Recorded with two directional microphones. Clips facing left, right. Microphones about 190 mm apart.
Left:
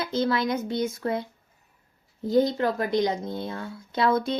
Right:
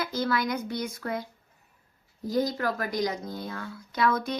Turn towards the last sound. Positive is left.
turn(degrees=25)  # may be behind; listen again after turning